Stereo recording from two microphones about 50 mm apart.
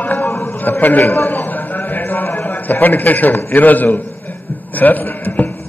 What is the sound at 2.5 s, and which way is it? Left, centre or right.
A man's voice, left.